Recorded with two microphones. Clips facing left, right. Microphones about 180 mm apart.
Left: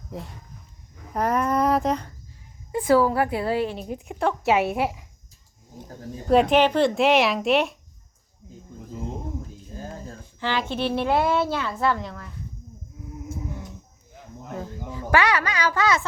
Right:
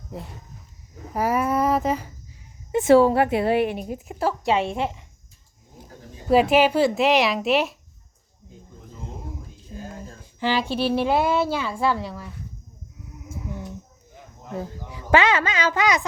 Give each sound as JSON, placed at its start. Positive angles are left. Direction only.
{"t": 1.1, "sound": "speech", "side_deg": -5}
{"t": 2.7, "sound": "a woman's voice", "side_deg": -25}
{"t": 3.8, "sound": "speech", "side_deg": 0}
{"t": 6.2, "sound": "speech", "side_deg": -5}
{"t": 10.4, "sound": "a woman's voice", "side_deg": -15}
{"t": 14.8, "sound": "a child's voice", "side_deg": -15}